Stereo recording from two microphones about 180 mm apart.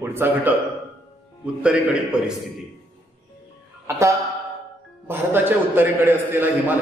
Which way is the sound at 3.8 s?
15° right (ahead or behind).